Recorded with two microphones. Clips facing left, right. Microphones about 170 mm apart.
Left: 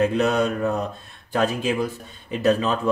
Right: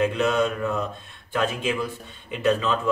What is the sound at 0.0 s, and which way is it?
Speech, 40° left (ahead or behind).